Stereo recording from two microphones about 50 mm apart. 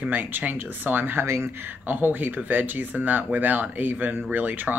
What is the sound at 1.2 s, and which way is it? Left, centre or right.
Speech, right.